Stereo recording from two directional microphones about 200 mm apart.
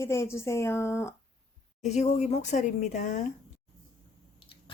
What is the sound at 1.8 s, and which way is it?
A woman's voice, 35° left (ahead or behind).